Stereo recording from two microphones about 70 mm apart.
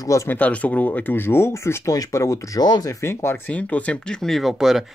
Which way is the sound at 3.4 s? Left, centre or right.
Left.